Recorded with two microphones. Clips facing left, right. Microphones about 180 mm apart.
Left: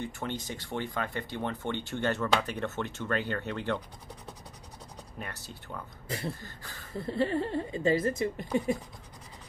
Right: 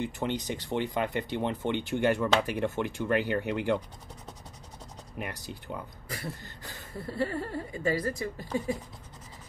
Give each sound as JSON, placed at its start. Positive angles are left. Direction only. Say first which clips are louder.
{"t": 0.0, "sound": "speech", "louder": "right 4 dB", "side_deg": -15}
{"t": 5.2, "sound": "speech", "louder": "right 5 dB", "side_deg": -15}
{"t": 6.0, "sound": "a woman's voice", "louder": "left 3 dB", "side_deg": 25}